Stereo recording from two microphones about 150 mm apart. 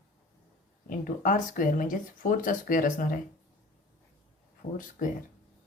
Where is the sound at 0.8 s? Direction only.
65° left (ahead or behind).